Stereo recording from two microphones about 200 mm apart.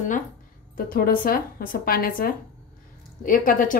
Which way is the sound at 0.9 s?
45° left (ahead or behind).